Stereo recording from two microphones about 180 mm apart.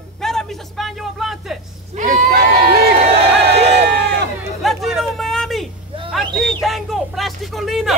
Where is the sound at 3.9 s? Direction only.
65° right (ahead or behind).